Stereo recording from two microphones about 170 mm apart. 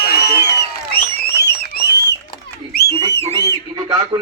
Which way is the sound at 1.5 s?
65° left (ahead or behind).